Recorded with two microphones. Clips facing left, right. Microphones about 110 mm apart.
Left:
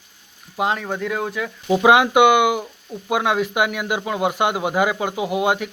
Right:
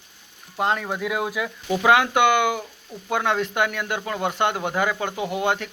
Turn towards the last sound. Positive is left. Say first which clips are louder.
# left 4 dB
turn(degrees=10)  # may be behind; listen again after turning